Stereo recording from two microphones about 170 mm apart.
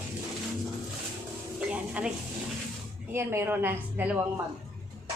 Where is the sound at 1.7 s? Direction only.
5° right (ahead or behind).